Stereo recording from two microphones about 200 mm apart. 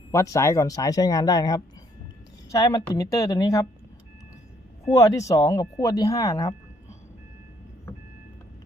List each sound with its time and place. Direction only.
0.1 s speech: 15° left (ahead or behind)
4.9 s speech: 15° left (ahead or behind)